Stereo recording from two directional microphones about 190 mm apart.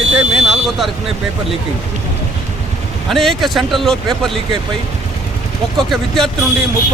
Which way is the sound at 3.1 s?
Centre (ahead or behind).